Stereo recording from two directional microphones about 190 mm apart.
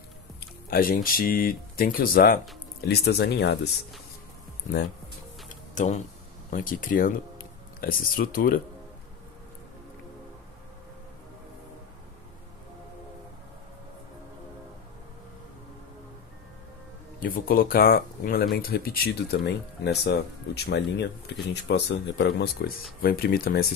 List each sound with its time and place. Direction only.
0.4 s speech: 50° left (ahead or behind)
5.5 s music: 40° left (ahead or behind)
6.5 s speech: 45° left (ahead or behind)
17.2 s speech: 50° left (ahead or behind)
23.0 s speech: 50° left (ahead or behind)